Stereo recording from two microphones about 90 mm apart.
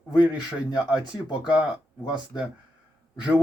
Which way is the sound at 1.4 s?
10° right (ahead or behind).